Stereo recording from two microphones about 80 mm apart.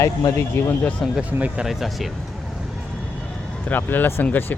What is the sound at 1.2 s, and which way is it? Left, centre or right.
Speech, centre.